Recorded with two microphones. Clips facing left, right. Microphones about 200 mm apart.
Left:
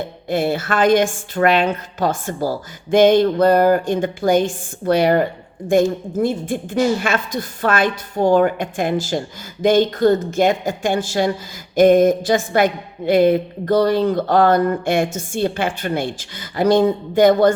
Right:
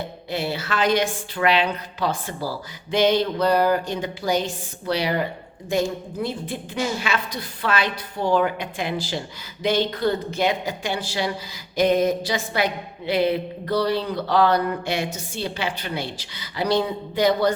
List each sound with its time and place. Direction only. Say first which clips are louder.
0.3 s a woman's voice: left 7 dB; 50° left (ahead or behind)